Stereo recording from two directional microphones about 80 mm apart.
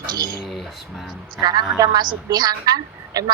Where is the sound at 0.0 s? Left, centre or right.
Right.